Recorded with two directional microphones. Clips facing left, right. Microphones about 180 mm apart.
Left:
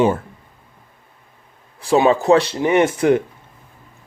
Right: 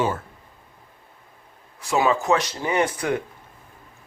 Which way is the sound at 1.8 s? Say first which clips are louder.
Left 6 dB; 30° left (ahead or behind).